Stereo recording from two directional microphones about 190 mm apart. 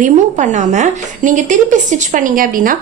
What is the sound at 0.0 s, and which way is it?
A woman's voice, 40° right (ahead or behind).